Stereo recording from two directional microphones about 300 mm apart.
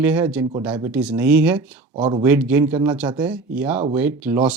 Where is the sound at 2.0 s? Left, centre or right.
Centre.